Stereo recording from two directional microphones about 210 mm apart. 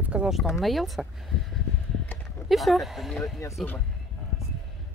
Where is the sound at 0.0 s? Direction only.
5° right (ahead or behind).